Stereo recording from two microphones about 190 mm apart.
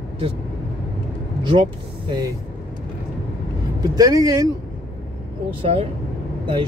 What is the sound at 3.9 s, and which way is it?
Speech, 20° right (ahead or behind).